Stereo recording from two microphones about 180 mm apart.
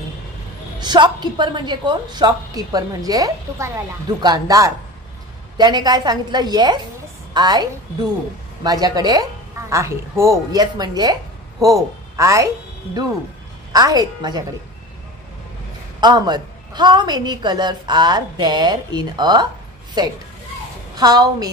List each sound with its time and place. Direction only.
0.7 s a woman's voice: 25° right (ahead or behind)
13.7 s a woman's voice: 20° right (ahead or behind)
16.0 s a woman's voice: 25° right (ahead or behind)